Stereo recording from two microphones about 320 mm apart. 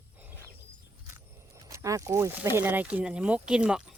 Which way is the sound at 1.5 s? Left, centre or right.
Centre.